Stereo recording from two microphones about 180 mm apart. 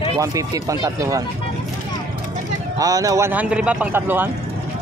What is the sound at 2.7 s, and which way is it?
Speech, 20° right (ahead or behind).